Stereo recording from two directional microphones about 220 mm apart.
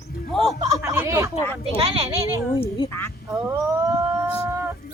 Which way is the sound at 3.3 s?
15° right (ahead or behind).